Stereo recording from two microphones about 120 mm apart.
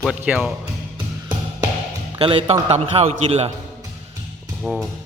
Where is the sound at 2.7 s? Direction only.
60° right (ahead or behind).